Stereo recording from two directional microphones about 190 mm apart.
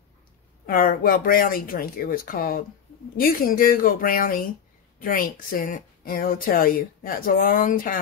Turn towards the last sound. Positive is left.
turn(degrees=45)  # may be behind; listen again after turning